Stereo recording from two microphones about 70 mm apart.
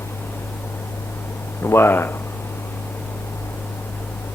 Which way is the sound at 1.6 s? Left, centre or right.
Left.